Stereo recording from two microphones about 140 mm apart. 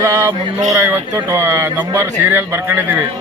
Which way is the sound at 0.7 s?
20° right (ahead or behind).